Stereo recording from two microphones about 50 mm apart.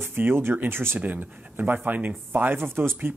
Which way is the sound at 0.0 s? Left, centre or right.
Right.